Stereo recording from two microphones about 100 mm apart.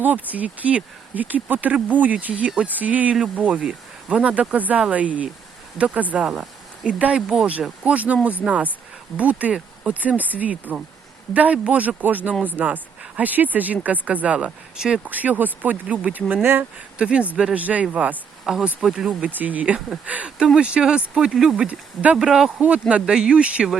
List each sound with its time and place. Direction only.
0.0 s speech: 15° right (ahead or behind)
6.2 s a sound: 5° right (ahead or behind)
7.0 s speech: 10° right (ahead or behind)
15.1 s speech: 15° right (ahead or behind)
17.0 s speech: 10° right (ahead or behind)